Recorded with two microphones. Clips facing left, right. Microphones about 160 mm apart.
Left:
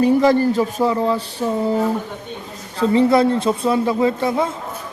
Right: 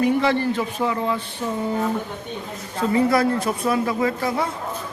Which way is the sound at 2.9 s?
25° left (ahead or behind).